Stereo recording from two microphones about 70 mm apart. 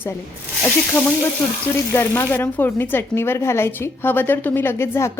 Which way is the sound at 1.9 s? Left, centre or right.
Left.